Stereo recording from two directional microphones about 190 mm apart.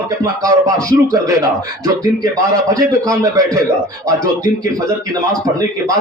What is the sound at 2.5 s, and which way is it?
A man's voice, 20° right (ahead or behind).